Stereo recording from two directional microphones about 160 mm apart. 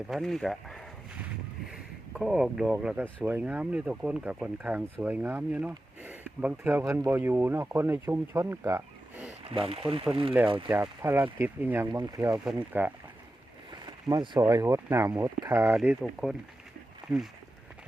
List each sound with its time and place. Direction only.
0.1 s a sound: centre (ahead or behind)
1.6 s boat: 5° right (ahead or behind)
2.7 s speech: 10° right (ahead or behind)
9.5 s speech: 35° right (ahead or behind)
10.4 s speech: 10° right (ahead or behind)
13.7 s speech: 30° right (ahead or behind); by 16.4 s centre (ahead or behind)
17.0 s a sound: 5° right (ahead or behind)